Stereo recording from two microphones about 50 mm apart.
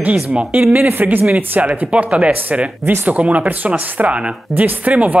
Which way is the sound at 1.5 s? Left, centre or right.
Right.